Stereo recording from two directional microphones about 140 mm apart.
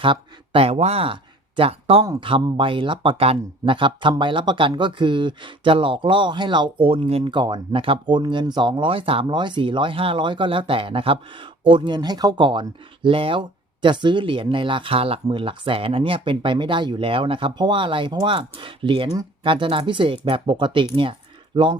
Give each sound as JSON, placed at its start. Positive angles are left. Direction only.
{"t": 0.0, "sound": "speech", "side_deg": -40}